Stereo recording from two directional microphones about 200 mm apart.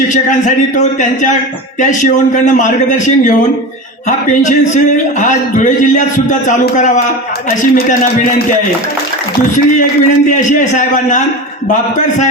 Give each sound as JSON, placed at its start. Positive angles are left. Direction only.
{"t": 0.1, "sound": "a man's voice", "side_deg": 40}
{"t": 1.8, "sound": "a man's voice", "side_deg": 40}
{"t": 4.3, "sound": "a man's voice", "side_deg": 40}
{"t": 10.1, "sound": "a man's voice", "side_deg": 40}